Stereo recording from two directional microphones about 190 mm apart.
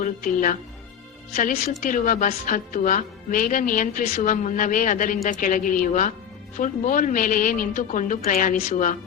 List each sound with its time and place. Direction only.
0.0 s a woman's voice: 45° left (ahead or behind)